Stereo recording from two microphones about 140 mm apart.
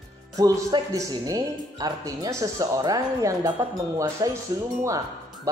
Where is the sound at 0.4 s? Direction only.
25° right (ahead or behind).